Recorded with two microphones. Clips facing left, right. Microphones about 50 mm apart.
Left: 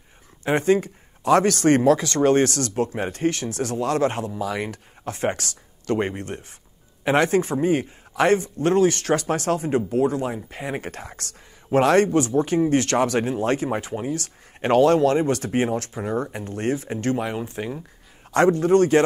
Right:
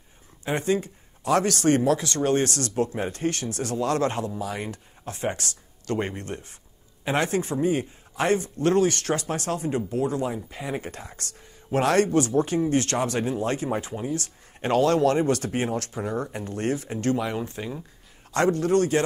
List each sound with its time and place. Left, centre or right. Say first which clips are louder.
0.5 s speech: left 5 dB; left
4.4 s speech: left 4 dB; left
5.9 s speech: left 4 dB; left
9.3 s speech: left 5 dB; left
10.2 s speech: left 1 dB; left